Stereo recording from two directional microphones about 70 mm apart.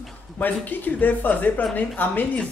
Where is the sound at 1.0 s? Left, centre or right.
Left.